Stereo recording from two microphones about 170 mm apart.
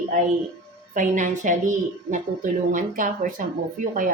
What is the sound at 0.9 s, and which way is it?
A woman's voice, 50° right (ahead or behind).